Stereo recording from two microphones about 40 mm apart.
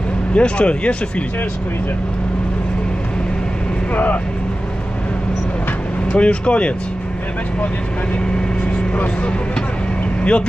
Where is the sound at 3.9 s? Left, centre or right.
Left.